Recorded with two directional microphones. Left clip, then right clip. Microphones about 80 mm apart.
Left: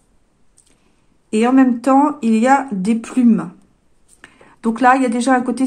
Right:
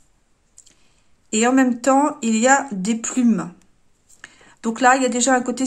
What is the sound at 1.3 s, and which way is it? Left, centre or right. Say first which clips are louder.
Speech: left 3 dB; centre.